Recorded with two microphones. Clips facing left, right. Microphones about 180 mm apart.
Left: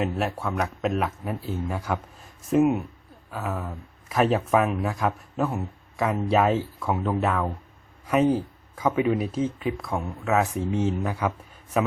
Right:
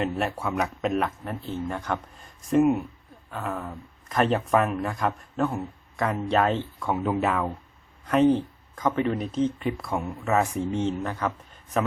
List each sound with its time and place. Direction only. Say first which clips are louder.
0.0 s speech: even; 5° left (ahead or behind)